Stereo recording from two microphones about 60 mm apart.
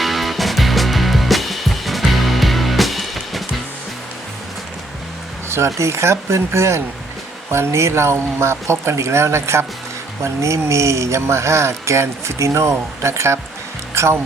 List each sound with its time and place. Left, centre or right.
0.0 s music: centre
5.5 s speech: right
13.9 s music: right